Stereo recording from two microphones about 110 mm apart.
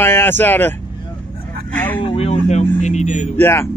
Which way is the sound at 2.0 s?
60° left (ahead or behind).